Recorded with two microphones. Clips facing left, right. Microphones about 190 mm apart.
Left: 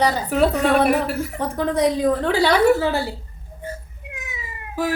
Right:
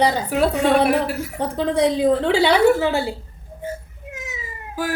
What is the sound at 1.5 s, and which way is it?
A woman's voice, 25° right (ahead or behind).